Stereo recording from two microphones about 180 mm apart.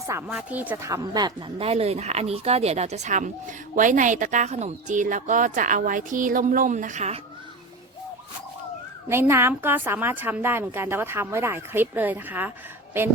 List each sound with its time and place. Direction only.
0.1 s a woman's voice: 15° right (ahead or behind); by 7.2 s 40° right (ahead or behind)
9.0 s a woman's voice: 15° right (ahead or behind)